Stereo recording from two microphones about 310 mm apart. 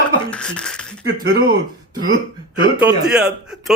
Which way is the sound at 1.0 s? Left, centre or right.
Right.